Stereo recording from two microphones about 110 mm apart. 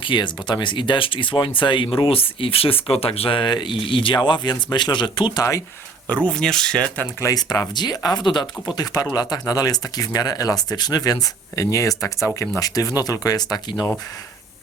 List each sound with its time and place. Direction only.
0.0 s speech: 45° left (ahead or behind)
5.4 s speech: 30° left (ahead or behind)
6.2 s speech: 5° left (ahead or behind)
7.2 s speech: 30° left (ahead or behind)